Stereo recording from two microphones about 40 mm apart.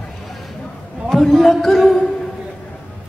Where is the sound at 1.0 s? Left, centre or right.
Centre.